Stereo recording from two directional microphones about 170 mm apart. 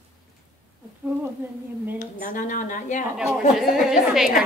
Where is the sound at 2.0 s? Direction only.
50° left (ahead or behind).